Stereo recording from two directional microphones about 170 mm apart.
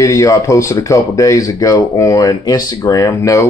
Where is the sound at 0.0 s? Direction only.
20° left (ahead or behind).